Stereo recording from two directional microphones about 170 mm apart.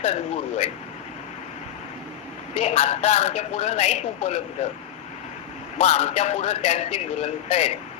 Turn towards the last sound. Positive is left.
turn(degrees=35)  # may be behind; listen again after turning